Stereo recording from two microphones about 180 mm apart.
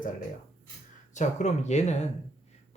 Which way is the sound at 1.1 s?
40° left (ahead or behind).